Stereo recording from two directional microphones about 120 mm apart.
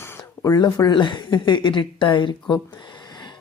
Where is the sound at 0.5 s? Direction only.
35° left (ahead or behind).